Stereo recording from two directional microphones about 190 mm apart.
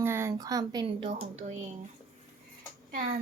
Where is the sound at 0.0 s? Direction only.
15° right (ahead or behind).